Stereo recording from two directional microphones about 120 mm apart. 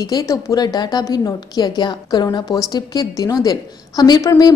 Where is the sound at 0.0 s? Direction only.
30° left (ahead or behind).